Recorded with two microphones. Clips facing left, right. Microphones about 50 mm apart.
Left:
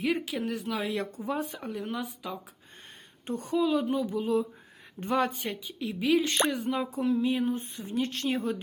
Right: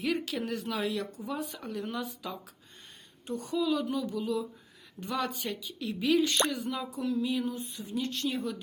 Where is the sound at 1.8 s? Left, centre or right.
Centre.